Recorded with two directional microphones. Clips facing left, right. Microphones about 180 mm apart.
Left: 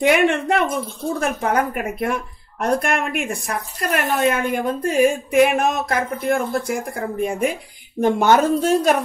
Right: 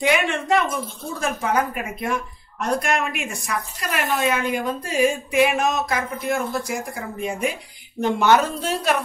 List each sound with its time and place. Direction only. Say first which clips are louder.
0.0 s a woman's voice: left 5 dB; 55° left (ahead or behind)